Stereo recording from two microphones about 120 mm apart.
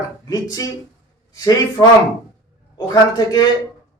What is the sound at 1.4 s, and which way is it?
A man's voice, 30° left (ahead or behind).